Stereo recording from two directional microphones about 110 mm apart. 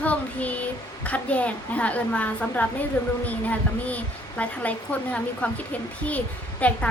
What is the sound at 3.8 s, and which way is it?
A child's voice, 10° left (ahead or behind).